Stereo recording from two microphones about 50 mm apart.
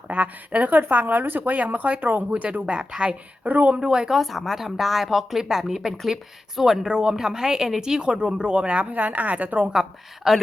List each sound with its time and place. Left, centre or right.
0.1 s speech: right
1.5 s a woman's voice: right
3.4 s a woman's voice: right
3.8 s speech: centre
4.1 s a woman's voice: centre; by 9.7 s right
10.3 s speech: centre